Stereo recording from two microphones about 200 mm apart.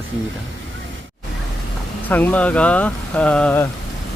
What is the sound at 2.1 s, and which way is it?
Speech, 10° left (ahead or behind).